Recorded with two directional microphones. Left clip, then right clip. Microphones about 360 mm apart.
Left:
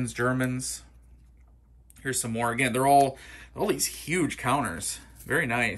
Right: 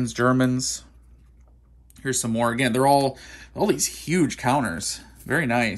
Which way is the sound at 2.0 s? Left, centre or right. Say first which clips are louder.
Right 5 dB; centre.